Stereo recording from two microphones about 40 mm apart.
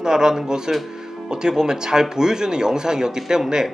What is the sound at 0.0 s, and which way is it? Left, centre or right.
Speech, centre.